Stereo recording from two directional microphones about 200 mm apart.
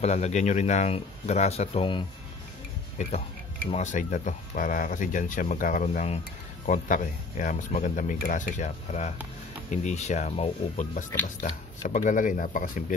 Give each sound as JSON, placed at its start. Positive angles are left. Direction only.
{"t": 0.0, "sound": "speech", "side_deg": 35}
{"t": 3.7, "sound": "speech", "side_deg": 40}